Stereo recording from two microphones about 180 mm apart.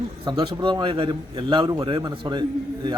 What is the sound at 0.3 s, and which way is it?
A man's voice, 30° right (ahead or behind).